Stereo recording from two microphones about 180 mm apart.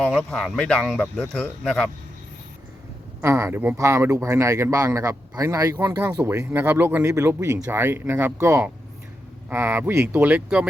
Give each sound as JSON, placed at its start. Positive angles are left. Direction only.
{"t": 0.0, "sound": "speech", "side_deg": 5}
{"t": 3.2, "sound": "speech", "side_deg": -15}